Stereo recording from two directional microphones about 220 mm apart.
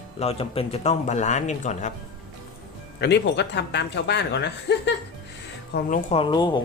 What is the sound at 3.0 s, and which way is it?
Speech, 50° left (ahead or behind).